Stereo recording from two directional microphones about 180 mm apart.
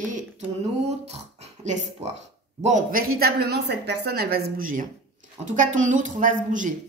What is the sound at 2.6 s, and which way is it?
A woman's voice, 45° right (ahead or behind).